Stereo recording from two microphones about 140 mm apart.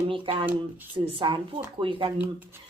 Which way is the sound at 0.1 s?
35° right (ahead or behind).